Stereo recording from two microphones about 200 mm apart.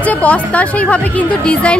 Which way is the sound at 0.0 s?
5° left (ahead or behind).